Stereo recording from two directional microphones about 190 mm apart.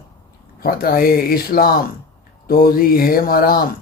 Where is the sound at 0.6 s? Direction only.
50° left (ahead or behind).